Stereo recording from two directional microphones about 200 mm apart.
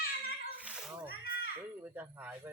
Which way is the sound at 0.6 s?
5° right (ahead or behind).